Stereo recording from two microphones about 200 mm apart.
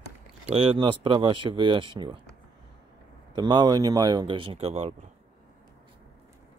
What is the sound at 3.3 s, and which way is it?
Speech, 20° right (ahead or behind).